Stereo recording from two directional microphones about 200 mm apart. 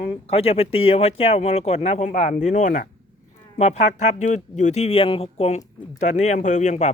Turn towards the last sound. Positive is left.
turn(degrees=35)  # may be behind; listen again after turning